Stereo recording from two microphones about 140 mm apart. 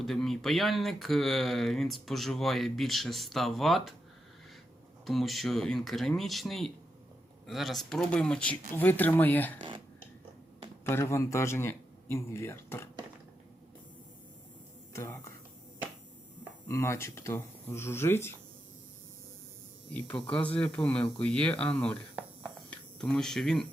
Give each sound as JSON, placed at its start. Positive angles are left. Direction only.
{"t": 0.0, "sound": "speech", "side_deg": 0}
{"t": 5.0, "sound": "speech", "side_deg": 0}
{"t": 10.8, "sound": "a man's voice", "side_deg": 20}
{"t": 14.9, "sound": "a man's voice", "side_deg": 20}
{"t": 16.6, "sound": "a man's voice", "side_deg": 20}
{"t": 19.9, "sound": "speech", "side_deg": 10}